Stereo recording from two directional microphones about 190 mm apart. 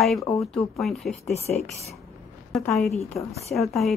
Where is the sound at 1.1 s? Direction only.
35° left (ahead or behind).